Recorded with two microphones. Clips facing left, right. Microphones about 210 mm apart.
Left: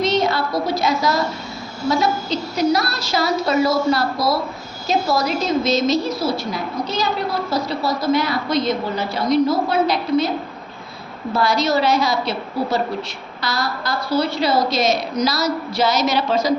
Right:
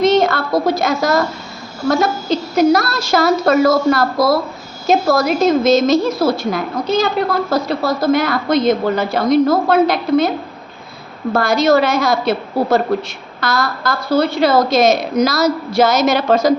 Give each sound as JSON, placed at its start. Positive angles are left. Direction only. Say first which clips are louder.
{"t": 0.0, "sound": "a sound", "louder": "right 5 dB", "side_deg": -50}
{"t": 1.9, "sound": "a woman's voice", "louder": "right 4 dB", "side_deg": -50}
{"t": 11.3, "sound": "a woman's voice", "louder": "right 5 dB", "side_deg": -50}